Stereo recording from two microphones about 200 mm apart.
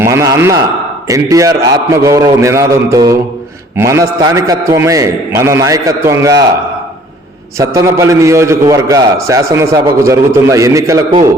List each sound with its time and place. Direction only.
0.0 s a man's voice: 15° right (ahead or behind)
7.6 s a man's voice: 15° right (ahead or behind)